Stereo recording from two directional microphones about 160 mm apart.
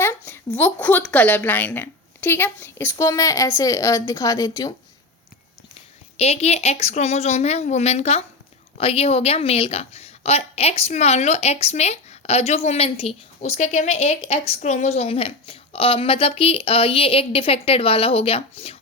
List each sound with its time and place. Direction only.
0.0 s a sound: 15° left (ahead or behind)
1.1 s a woman's voice: 10° left (ahead or behind)
6.1 s a woman's voice: 40° left (ahead or behind)